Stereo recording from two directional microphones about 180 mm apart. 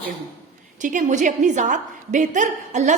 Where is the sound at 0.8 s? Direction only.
45° right (ahead or behind).